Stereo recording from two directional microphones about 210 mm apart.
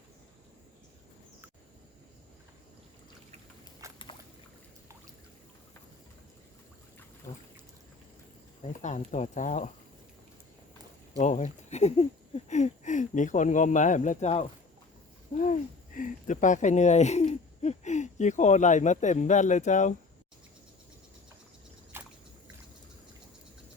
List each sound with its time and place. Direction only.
3.8 s a sound: 15° right (ahead or behind)
8.6 s speech: 35° left (ahead or behind)
11.2 s speech: 35° left (ahead or behind)
16.0 s speech: 40° left (ahead or behind)
21.9 s boat: 10° right (ahead or behind)